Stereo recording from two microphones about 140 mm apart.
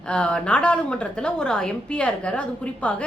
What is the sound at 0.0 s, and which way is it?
A woman's voice, 10° left (ahead or behind).